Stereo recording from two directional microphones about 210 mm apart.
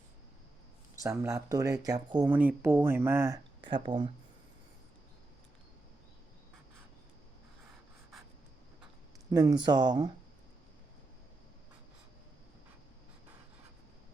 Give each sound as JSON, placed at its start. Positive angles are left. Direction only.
{"t": 1.0, "sound": "speech", "side_deg": -15}
{"t": 9.3, "sound": "speech", "side_deg": -20}